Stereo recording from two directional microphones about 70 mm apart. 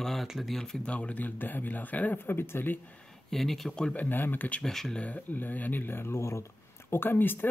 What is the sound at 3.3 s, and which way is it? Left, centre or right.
Speech, centre.